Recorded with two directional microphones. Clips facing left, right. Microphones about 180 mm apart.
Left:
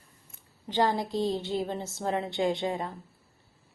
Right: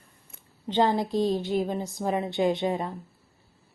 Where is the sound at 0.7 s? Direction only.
20° right (ahead or behind).